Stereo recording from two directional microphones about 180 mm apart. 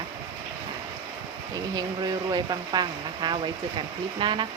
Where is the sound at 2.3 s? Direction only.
25° right (ahead or behind).